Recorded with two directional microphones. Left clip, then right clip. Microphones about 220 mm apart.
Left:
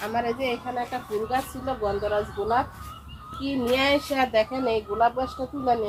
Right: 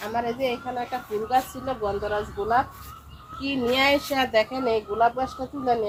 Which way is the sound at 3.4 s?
20° right (ahead or behind).